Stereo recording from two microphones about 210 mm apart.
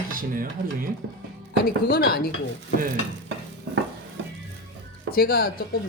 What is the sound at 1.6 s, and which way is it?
Speech, 45° left (ahead or behind).